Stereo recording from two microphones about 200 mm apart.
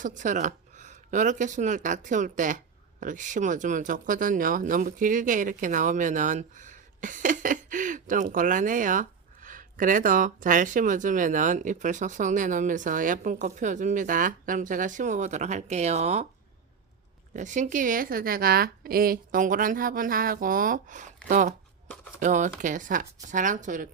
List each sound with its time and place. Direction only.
0.0 s speech: 40° right (ahead or behind)
17.3 s a woman's voice: 40° right (ahead or behind)